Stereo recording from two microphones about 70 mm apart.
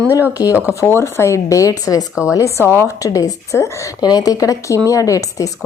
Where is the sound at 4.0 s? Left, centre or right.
Left.